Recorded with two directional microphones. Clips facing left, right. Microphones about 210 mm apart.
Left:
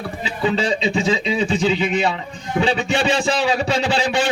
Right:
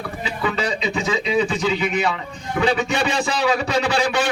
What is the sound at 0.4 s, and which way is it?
A man's voice, 25° left (ahead or behind).